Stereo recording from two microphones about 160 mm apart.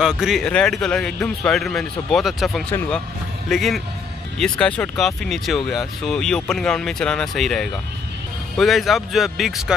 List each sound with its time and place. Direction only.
0.0 s speech: 5° right (ahead or behind)